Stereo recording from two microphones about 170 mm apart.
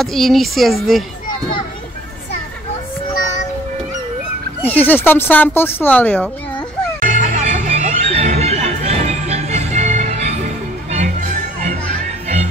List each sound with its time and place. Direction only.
0.0 s speech: centre (ahead or behind)
4.6 s fowl: 10° left (ahead or behind)
7.0 s music: 50° right (ahead or behind)